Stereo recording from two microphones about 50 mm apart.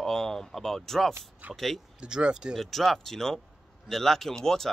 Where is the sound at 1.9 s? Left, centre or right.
Centre.